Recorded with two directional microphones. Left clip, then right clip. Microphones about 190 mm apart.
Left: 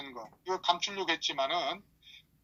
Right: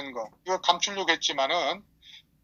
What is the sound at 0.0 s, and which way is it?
A woman's voice, 25° right (ahead or behind).